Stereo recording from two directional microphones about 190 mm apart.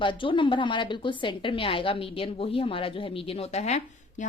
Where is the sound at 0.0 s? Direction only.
25° left (ahead or behind).